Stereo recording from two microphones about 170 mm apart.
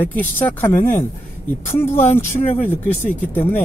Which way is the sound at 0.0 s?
10° left (ahead or behind).